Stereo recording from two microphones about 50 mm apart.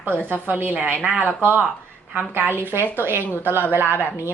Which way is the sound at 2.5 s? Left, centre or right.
Left.